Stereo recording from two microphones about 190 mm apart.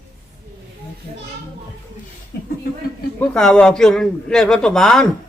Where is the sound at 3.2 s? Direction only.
5° left (ahead or behind).